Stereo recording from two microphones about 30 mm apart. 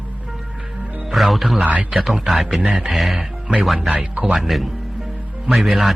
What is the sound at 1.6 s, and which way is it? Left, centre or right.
Speech, right.